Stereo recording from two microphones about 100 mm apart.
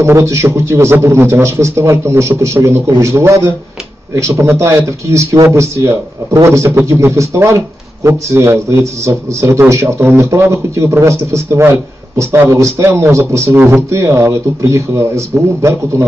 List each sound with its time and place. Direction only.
0.0 s a man's voice: 30° right (ahead or behind)